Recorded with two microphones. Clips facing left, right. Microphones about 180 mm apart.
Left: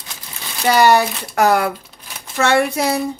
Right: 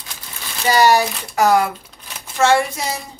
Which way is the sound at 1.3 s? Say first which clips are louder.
Even; 60° left (ahead or behind).